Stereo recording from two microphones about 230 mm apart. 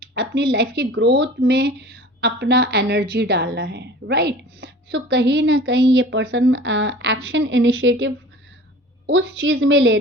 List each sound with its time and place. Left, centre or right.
0.1 s a woman's voice: right